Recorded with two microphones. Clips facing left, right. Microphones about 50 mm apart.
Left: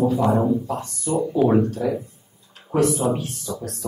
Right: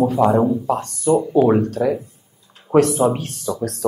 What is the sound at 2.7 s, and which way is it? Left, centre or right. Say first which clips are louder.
Speech: right 6 dB; right.